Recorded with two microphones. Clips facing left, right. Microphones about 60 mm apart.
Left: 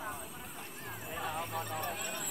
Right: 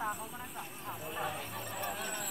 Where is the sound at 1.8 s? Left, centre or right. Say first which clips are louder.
Even; centre.